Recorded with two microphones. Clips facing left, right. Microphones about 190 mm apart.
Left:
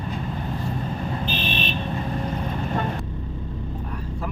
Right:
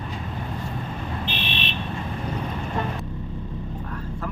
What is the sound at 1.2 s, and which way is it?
Fire alarm, 45° left (ahead or behind).